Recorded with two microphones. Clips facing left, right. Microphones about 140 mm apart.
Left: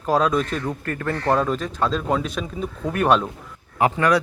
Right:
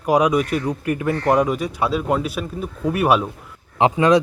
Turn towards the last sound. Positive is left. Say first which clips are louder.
# right 4 dB
turn(degrees=-20)  # may be behind; listen again after turning